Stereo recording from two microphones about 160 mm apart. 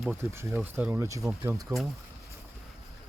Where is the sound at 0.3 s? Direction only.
15° right (ahead or behind).